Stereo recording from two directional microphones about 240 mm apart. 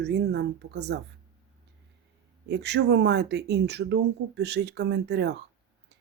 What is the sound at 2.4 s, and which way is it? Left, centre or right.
Speech, right.